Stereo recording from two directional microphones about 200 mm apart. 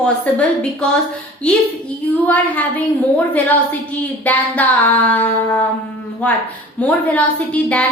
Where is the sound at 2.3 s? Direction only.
10° left (ahead or behind).